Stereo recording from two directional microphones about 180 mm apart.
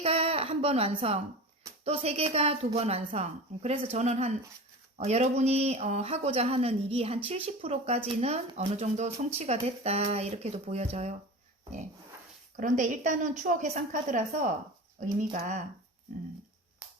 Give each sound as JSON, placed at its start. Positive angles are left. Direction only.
{"t": 0.0, "sound": "a woman's voice", "side_deg": -30}
{"t": 12.5, "sound": "a woman's voice", "side_deg": -45}